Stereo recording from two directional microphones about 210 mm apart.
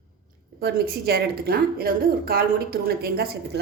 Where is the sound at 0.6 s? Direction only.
45° right (ahead or behind).